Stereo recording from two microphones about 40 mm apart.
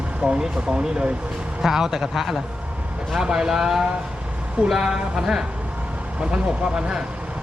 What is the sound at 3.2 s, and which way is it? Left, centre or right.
Speech, centre.